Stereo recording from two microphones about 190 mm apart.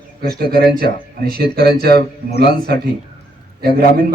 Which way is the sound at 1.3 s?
55° right (ahead or behind).